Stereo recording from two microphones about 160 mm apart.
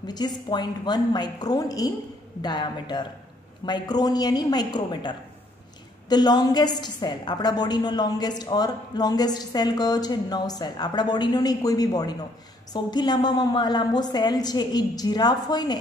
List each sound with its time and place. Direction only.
0.0 s a woman's voice: 25° left (ahead or behind)